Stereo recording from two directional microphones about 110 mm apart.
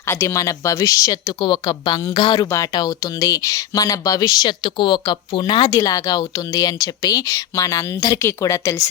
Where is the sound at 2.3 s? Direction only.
25° left (ahead or behind).